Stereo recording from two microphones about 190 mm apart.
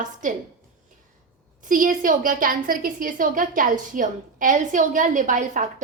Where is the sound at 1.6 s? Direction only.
45° right (ahead or behind).